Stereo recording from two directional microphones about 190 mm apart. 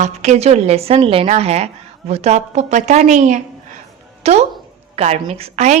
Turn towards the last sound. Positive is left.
turn(degrees=-35)  # may be behind; listen again after turning